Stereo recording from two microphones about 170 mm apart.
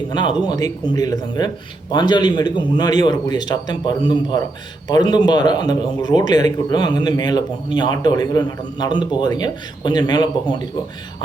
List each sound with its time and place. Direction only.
0.1 s a man's voice: 25° left (ahead or behind)